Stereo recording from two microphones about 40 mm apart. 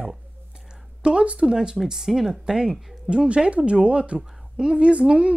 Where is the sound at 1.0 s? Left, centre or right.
Right.